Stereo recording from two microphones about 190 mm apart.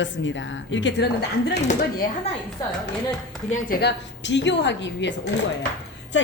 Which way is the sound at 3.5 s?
55° left (ahead or behind).